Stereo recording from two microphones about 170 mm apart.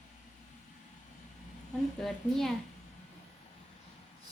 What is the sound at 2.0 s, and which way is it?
Speech, centre (ahead or behind).